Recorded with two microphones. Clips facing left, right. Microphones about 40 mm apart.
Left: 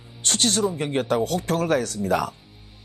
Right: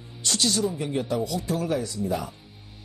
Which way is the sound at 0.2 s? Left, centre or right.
Left.